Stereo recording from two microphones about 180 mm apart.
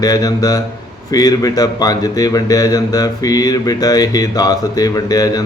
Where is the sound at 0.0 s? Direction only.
20° left (ahead or behind).